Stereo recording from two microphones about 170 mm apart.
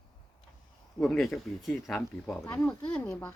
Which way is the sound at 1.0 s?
Centre (ahead or behind).